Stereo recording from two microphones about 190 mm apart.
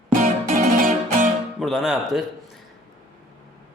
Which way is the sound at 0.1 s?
45° right (ahead or behind).